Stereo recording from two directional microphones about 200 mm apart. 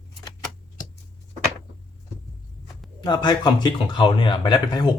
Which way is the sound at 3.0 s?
20° left (ahead or behind).